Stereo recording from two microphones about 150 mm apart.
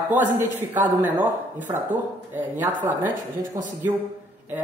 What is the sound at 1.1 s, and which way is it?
Speech, 10° right (ahead or behind).